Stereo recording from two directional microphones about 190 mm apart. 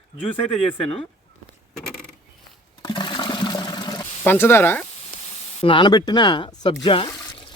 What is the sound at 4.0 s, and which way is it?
Speech, 10° left (ahead or behind).